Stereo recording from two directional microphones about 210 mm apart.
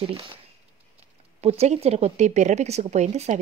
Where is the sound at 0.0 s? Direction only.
25° right (ahead or behind).